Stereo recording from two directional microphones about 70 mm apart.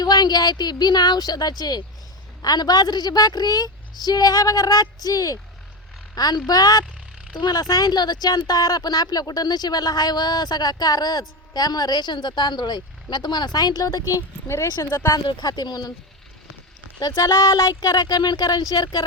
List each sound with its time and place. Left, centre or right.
0.0 s speech: left
14.1 s speech: left
15.1 s speech: left
17.0 s speech: left
17.7 s speech: left